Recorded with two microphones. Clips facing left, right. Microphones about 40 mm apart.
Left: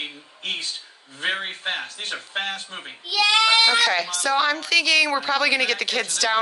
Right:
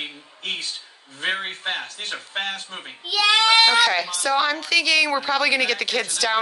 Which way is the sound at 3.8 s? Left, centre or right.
Centre.